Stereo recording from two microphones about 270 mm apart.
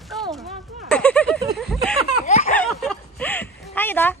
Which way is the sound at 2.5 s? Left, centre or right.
Centre.